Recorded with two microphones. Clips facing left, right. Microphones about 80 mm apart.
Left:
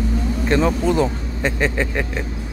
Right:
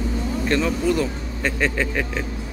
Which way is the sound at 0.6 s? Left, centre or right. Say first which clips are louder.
Left 5 dB; left.